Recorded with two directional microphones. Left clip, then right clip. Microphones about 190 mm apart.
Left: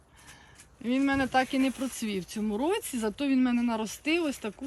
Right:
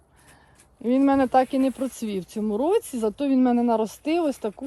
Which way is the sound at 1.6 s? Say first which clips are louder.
Right 5 dB; 15° left (ahead or behind).